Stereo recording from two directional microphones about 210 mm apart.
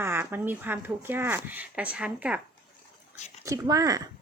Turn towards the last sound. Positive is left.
turn(degrees=-15)  # may be behind; listen again after turning